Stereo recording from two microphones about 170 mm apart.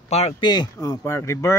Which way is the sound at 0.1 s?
40° left (ahead or behind).